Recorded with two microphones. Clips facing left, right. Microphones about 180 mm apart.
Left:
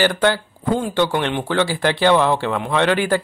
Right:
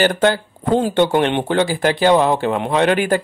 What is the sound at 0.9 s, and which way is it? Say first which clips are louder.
Speech: right 4 dB; 20° right (ahead or behind).